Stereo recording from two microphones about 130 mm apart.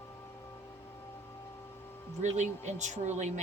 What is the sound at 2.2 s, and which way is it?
Speech, 65° right (ahead or behind).